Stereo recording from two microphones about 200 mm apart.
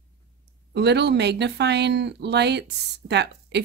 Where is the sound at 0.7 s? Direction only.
55° right (ahead or behind).